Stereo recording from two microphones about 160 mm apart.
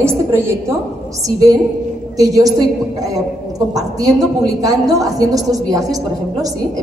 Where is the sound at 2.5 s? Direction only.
20° right (ahead or behind).